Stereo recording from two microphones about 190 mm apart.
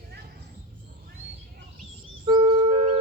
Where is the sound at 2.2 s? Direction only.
25° right (ahead or behind).